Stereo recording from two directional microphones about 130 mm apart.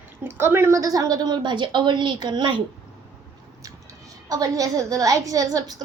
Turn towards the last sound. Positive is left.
turn(degrees=-30)  # may be behind; listen again after turning